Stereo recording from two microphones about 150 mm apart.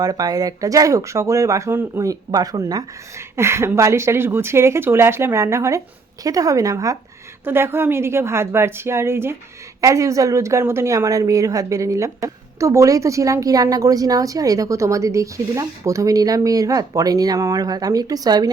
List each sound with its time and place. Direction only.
0.0 s a woman's voice: 25° right (ahead or behind)